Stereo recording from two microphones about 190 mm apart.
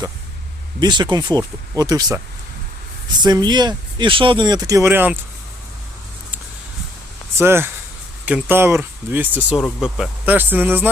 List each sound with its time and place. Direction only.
0.8 s speech: 25° right (ahead or behind)
7.3 s speech: 10° right (ahead or behind)